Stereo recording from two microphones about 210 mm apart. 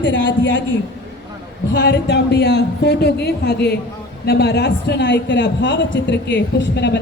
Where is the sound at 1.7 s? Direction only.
55° left (ahead or behind).